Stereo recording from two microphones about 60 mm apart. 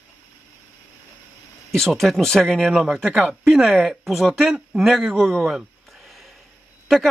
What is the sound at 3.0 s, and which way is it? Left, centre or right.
Speech, right.